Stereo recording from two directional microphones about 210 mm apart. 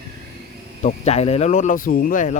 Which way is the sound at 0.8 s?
30° left (ahead or behind).